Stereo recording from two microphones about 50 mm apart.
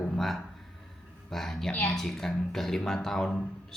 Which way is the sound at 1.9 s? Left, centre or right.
Centre.